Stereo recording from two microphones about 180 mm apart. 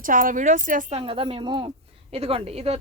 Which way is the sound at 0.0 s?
50° right (ahead or behind).